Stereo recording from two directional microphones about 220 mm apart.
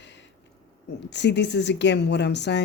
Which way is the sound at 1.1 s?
50° left (ahead or behind).